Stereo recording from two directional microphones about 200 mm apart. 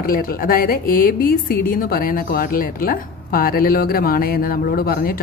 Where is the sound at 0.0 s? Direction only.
45° left (ahead or behind).